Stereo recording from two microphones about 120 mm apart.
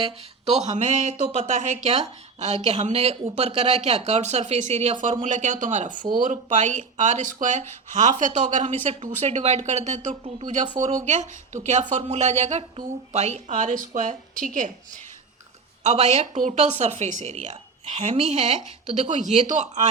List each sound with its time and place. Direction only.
0.0 s speech: 60° right (ahead or behind); by 1.1 s 80° right
1.2 s speech: 90° right
5.2 s a woman's voice: 90° right
8.9 s a woman's voice: 65° right (ahead or behind); by 14.7 s 90° right
15.8 s speech: 70° right (ahead or behind)
18.9 s a woman's voice: 80° right